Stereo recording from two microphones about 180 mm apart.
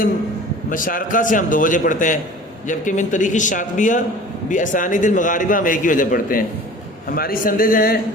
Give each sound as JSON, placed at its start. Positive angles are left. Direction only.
{"t": 0.7, "sound": "a man's voice", "side_deg": 50}